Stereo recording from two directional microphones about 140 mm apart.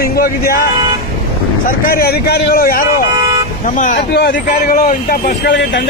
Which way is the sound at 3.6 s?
65° left (ahead or behind).